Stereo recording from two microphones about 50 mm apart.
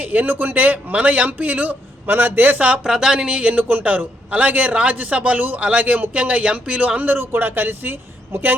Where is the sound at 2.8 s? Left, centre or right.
Centre.